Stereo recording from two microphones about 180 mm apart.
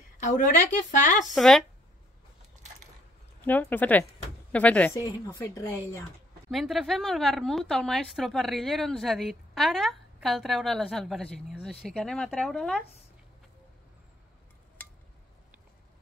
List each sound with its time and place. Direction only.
0.2 s a woman's voice: 45° left (ahead or behind)
1.2 s speech: centre (ahead or behind)
3.4 s speech: 10° left (ahead or behind)
6.5 s speech: centre (ahead or behind)